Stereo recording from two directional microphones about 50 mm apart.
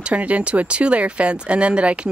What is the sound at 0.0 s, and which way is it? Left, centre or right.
Speech, right.